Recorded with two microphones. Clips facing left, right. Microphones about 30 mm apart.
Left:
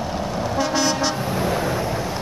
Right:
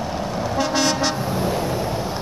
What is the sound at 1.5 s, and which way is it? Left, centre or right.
Vehicle, left.